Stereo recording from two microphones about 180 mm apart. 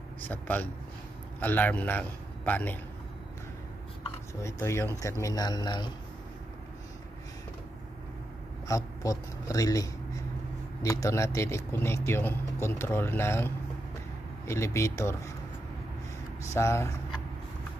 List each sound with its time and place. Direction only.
0.2 s speech: 10° left (ahead or behind)
4.0 s a man's voice: 15° left (ahead or behind)
8.6 s speech: 15° left (ahead or behind)
16.5 s speech: 15° left (ahead or behind)